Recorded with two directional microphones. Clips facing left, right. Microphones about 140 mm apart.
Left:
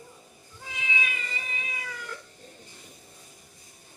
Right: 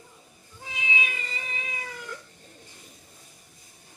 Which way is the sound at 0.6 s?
25° right (ahead or behind).